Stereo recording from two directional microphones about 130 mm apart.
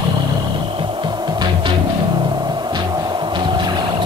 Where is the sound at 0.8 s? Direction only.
35° right (ahead or behind).